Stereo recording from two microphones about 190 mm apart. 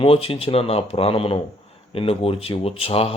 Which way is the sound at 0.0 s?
30° left (ahead or behind).